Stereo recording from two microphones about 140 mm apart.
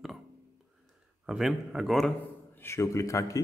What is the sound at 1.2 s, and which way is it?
Speech, 5° right (ahead or behind).